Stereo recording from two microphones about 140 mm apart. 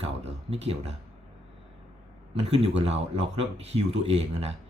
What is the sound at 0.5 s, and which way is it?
Speech, 45° right (ahead or behind).